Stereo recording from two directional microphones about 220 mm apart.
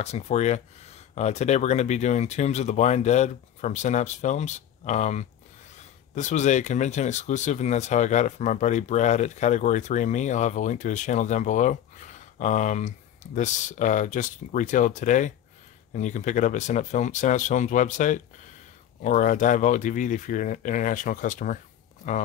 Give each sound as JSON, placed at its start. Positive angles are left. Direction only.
{"t": 0.0, "sound": "speech", "side_deg": 30}